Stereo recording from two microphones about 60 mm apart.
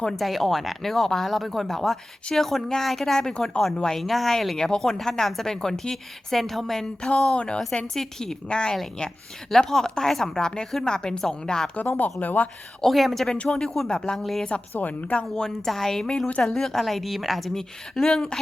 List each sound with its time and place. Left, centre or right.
0.0 s a woman's voice: centre
11.9 s speech: left
12.8 s speech: centre
13.3 s a woman's voice: centre
14.2 s speech: centre
14.7 s a woman's voice: left; by 18.3 s centre